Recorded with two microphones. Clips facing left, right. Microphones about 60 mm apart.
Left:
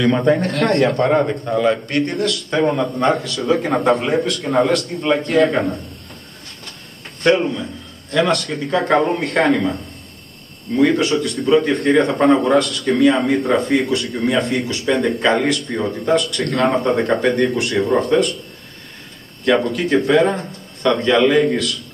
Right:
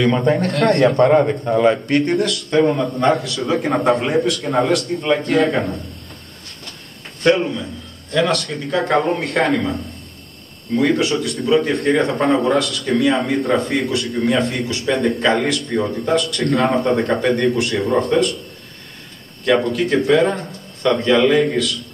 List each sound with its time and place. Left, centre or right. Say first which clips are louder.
0.3 s a man's voice: even; centre
1.6 s a man's voice: right 3 dB; centre
2.5 s a man's voice: right 2 dB; centre
7.2 s a man's voice: even; centre
10.8 s a man's voice: left 2 dB; centre
19.4 s a man's voice: even; centre